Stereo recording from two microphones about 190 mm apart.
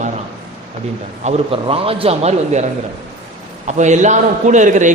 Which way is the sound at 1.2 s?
30° right (ahead or behind).